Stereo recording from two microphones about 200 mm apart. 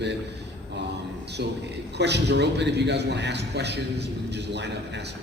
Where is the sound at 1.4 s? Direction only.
60° right (ahead or behind).